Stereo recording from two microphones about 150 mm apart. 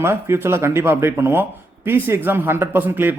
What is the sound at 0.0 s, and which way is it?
Speech, 15° right (ahead or behind).